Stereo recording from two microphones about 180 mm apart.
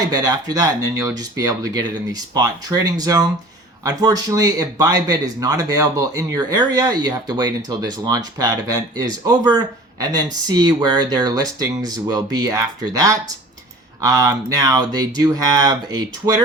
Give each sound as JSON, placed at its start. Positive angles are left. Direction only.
{"t": 0.0, "sound": "speech", "side_deg": -20}